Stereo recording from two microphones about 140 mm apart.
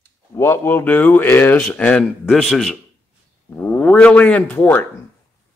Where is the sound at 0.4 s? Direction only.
15° left (ahead or behind).